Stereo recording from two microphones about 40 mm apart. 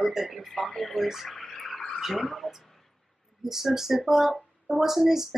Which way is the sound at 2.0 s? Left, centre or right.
Centre.